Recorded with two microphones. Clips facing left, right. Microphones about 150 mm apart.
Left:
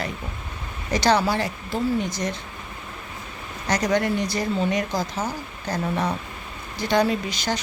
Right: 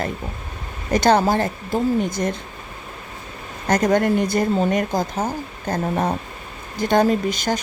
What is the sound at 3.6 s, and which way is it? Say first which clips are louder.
Speech: right 5 dB; 50° right (ahead or behind).